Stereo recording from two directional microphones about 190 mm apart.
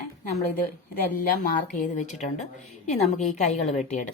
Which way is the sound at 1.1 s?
50° left (ahead or behind).